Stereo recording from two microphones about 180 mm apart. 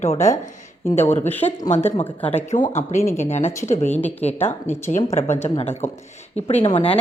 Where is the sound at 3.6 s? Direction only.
40° left (ahead or behind).